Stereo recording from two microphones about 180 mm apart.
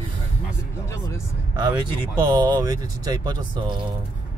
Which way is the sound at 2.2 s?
25° right (ahead or behind).